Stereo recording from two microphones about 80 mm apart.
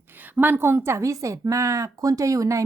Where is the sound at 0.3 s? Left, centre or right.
Right.